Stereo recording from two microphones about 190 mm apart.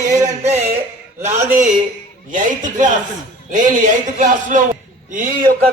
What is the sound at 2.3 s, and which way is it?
A man's voice, 45° right (ahead or behind).